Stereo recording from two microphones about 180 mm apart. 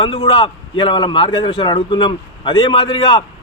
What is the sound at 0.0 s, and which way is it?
A man's voice, 30° left (ahead or behind).